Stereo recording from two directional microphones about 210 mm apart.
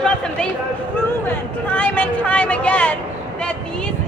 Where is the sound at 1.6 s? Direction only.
5° left (ahead or behind).